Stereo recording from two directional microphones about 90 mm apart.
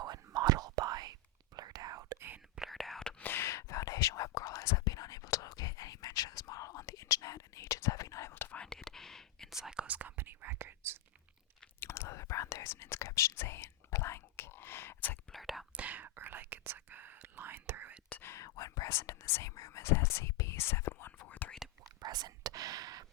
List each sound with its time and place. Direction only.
0.3 s whispering: 45° right (ahead or behind); by 2.4 s 25° right (ahead or behind)
2.6 s whispering: centre (ahead or behind)
3.2 s whispering: 25° left (ahead or behind)
8.6 s whispering: 5° left (ahead or behind); by 11.0 s 25° right (ahead or behind)
11.8 s whispering: 30° left (ahead or behind)
15.3 s whispering: centre (ahead or behind)
15.7 s whispering: 15° right (ahead or behind)
18.2 s whispering: 30° left (ahead or behind)
22.0 s whispering: 50° right (ahead or behind)